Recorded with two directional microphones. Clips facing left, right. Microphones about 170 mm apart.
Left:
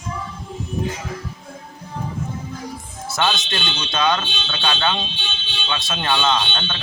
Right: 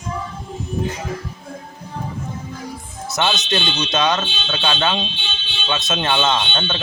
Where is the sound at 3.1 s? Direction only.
20° right (ahead or behind).